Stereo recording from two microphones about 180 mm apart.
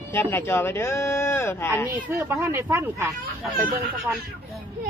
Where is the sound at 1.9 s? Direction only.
15° right (ahead or behind).